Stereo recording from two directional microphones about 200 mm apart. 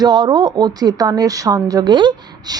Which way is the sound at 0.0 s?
20° right (ahead or behind).